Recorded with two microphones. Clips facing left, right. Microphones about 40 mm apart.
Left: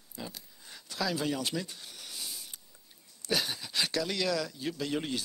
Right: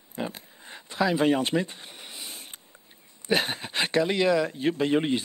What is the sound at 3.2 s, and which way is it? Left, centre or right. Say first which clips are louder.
Speech: right 7 dB; right.